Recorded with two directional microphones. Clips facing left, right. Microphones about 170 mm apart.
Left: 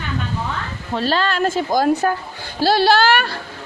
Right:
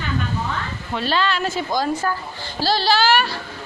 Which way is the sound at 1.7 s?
65° left (ahead or behind).